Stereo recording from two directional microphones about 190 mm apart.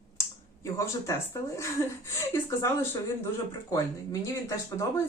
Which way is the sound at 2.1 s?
15° left (ahead or behind).